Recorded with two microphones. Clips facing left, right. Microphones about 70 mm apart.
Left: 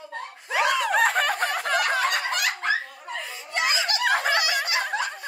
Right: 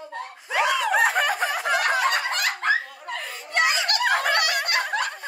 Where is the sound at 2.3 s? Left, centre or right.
Right.